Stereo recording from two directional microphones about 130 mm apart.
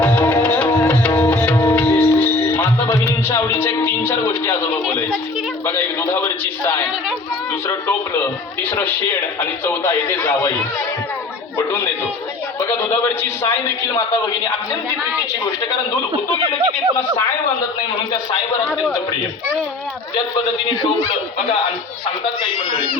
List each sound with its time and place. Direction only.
0.0 s music: 10° left (ahead or behind)
5.6 s a sound: 20° left (ahead or behind)
7.7 s music: 20° left (ahead or behind)
9.4 s a man's voice: 20° left (ahead or behind)
12.5 s a man's voice: 20° left (ahead or behind)